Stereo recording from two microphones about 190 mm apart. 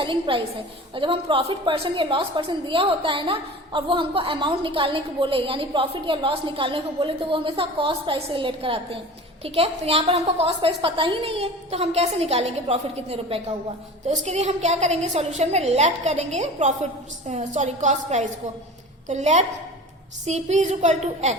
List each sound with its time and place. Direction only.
0.0 s a woman's voice: 25° right (ahead or behind)